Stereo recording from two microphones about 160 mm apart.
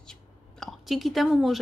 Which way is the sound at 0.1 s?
Centre (ahead or behind).